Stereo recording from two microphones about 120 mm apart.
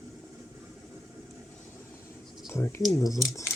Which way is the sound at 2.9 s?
25° left (ahead or behind).